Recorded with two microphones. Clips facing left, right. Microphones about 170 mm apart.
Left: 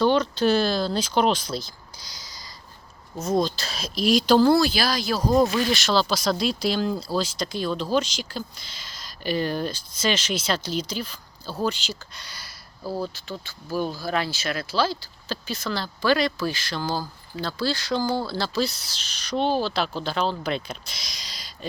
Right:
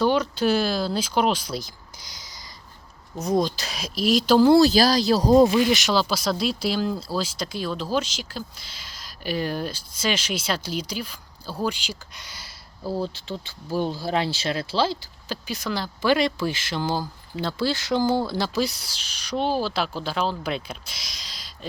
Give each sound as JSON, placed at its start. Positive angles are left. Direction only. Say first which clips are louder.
{"t": 0.0, "sound": "speech", "louder": "left 1 dB", "side_deg": -10}
{"t": 4.6, "sound": "speech", "louder": "right 6 dB", "side_deg": -35}
{"t": 5.4, "sound": "speech", "louder": "right 4 dB", "side_deg": -15}
{"t": 15.3, "sound": "speech", "louder": "even", "side_deg": -15}